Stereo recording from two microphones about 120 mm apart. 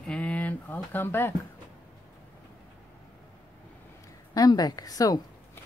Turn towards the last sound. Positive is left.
turn(degrees=30)  # may be behind; listen again after turning